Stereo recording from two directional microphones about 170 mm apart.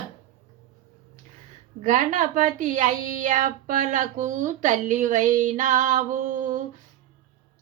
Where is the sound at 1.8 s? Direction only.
50° right (ahead or behind).